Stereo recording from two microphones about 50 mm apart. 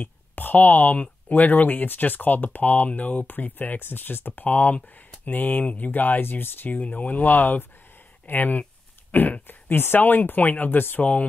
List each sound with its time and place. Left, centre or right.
0.0 s speech: left